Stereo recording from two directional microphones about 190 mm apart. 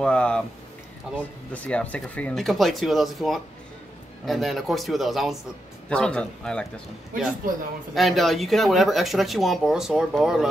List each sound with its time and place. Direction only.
0.0 s speech: 5° left (ahead or behind)
1.5 s speech: 5° left (ahead or behind)
7.4 s a man's voice: 45° right (ahead or behind)
7.9 s speech: centre (ahead or behind)